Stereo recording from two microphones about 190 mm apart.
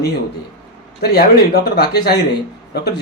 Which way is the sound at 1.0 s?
55° left (ahead or behind).